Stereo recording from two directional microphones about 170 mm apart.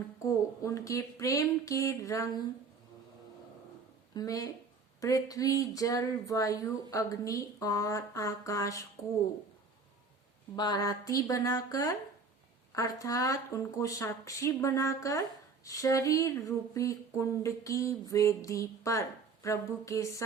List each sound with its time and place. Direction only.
0.6 s speech: 20° left (ahead or behind)
4.1 s speech: 20° left (ahead or behind)
10.5 s speech: 25° left (ahead or behind)